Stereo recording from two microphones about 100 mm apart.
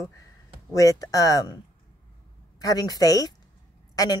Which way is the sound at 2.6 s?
40° left (ahead or behind).